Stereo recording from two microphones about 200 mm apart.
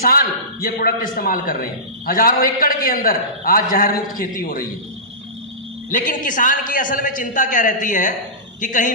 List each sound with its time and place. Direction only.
0.0 s a man's voice: 45° left (ahead or behind)
5.9 s a man's voice: 40° left (ahead or behind)